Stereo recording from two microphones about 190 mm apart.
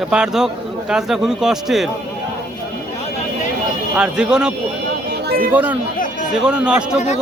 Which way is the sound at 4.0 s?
5° right (ahead or behind).